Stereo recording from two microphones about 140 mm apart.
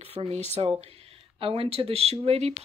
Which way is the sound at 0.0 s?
45° right (ahead or behind).